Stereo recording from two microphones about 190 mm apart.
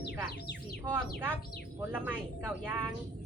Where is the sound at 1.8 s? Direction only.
10° right (ahead or behind).